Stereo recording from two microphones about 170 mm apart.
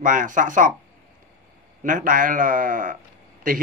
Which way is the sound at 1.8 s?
50° right (ahead or behind).